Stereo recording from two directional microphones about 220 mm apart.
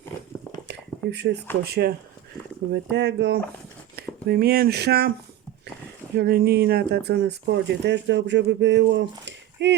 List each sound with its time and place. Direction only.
0.7 s a sound: 50° right (ahead or behind)
1.6 s speech: 45° right (ahead or behind)
6.1 s speech: 45° right (ahead or behind)